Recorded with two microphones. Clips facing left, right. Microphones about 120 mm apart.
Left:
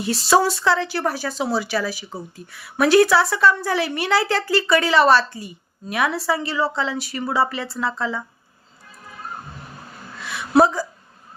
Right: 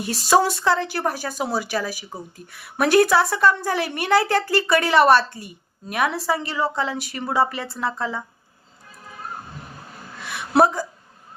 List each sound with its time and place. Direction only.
0.0 s a woman's voice: 45° right (ahead or behind)